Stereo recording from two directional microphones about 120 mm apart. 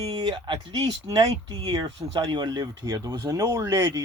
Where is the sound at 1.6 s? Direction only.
35° right (ahead or behind).